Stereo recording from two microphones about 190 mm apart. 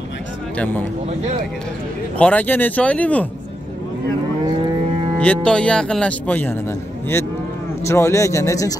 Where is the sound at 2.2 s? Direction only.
10° left (ahead or behind).